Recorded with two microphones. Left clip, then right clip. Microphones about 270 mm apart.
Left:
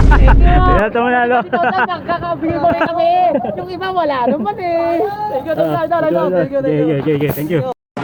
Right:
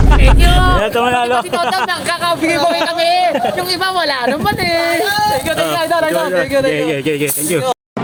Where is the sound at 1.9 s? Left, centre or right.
Right.